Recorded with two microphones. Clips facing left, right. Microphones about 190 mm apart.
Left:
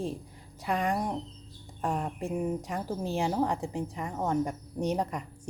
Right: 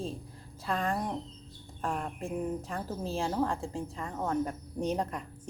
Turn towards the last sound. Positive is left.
turn(degrees=10)  # may be behind; listen again after turning